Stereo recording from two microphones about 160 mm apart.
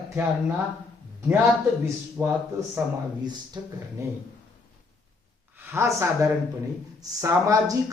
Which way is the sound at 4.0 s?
20° right (ahead or behind).